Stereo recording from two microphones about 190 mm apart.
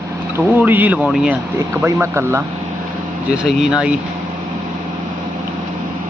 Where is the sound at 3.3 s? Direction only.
5° right (ahead or behind).